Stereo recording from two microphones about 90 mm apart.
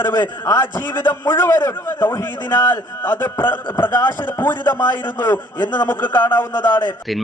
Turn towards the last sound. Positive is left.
turn(degrees=25)  # may be behind; listen again after turning